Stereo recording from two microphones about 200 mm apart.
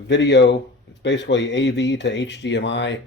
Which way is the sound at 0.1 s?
60° left (ahead or behind).